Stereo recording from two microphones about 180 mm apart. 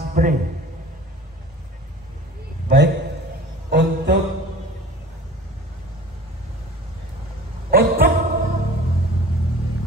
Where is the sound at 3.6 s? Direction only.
70° right (ahead or behind).